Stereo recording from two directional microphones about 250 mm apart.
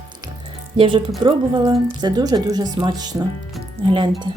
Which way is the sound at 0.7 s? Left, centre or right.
Centre.